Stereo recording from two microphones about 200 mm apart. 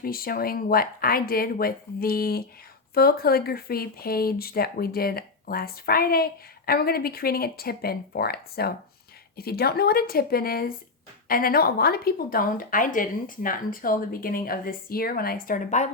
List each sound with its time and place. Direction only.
0.0 s speech: 50° left (ahead or behind)